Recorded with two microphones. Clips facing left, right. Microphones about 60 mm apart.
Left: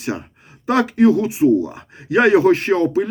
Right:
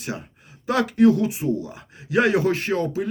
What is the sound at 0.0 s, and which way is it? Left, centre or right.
Speech, left.